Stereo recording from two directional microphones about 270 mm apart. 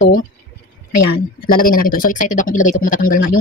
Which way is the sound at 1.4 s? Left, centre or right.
Left.